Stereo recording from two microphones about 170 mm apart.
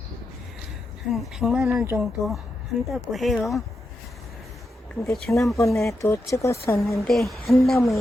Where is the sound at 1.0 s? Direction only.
5° right (ahead or behind).